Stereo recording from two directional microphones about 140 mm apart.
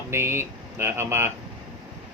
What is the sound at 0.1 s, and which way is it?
Speech, 15° right (ahead or behind).